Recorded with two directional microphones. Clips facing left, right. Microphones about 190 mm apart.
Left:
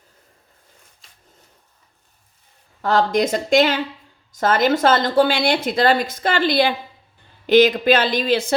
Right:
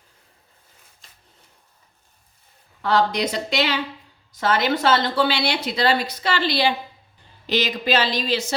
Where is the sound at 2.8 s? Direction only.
45° left (ahead or behind).